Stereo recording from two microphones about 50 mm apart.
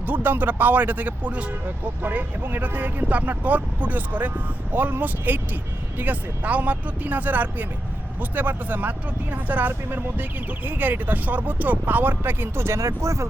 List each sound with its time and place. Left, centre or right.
0.0 s speech: right
1.6 s speech: right
12.6 s speech: right